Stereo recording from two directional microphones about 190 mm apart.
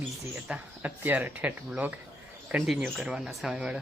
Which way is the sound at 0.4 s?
5° right (ahead or behind).